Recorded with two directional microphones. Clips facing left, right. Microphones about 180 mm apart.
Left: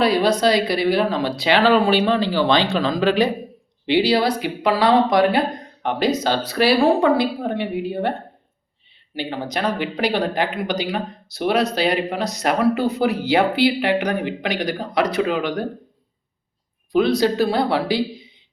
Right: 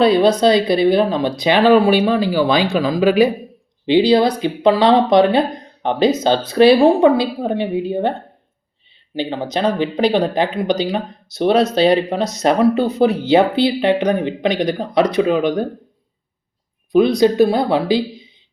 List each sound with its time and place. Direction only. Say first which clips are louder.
0.0 s speech: right 5 dB; 25° right (ahead or behind)
9.1 s speech: right 5 dB; 25° right (ahead or behind)
16.9 s speech: right 5 dB; 15° right (ahead or behind)